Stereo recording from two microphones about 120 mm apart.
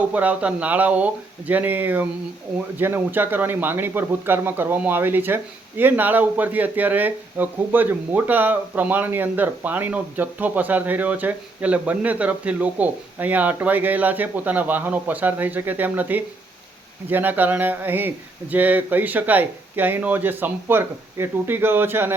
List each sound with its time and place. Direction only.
0.1 s speech: 10° right (ahead or behind)